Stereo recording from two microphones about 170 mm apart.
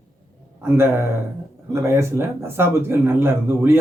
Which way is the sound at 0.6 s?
15° right (ahead or behind).